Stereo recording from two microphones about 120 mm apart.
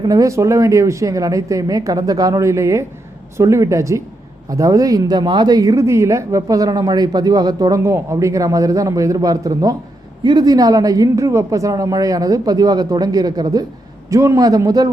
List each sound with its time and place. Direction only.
0.0 s speech: 30° right (ahead or behind)